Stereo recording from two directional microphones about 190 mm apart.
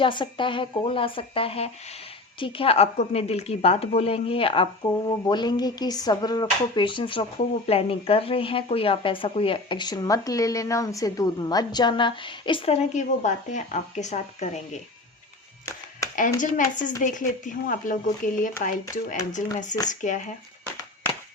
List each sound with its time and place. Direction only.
0.0 s a woman's voice: 25° left (ahead or behind)
16.4 s a woman's voice: 45° left (ahead or behind)